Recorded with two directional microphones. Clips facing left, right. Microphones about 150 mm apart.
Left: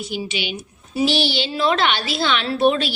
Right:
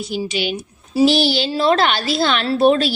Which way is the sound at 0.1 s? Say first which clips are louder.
Right 6 dB; 40° right (ahead or behind).